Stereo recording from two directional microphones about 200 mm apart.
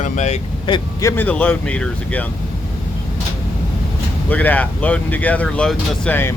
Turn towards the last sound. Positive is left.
turn(degrees=10)  # may be behind; listen again after turning